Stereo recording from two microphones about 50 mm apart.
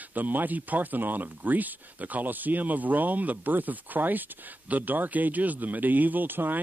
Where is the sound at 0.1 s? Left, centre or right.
Right.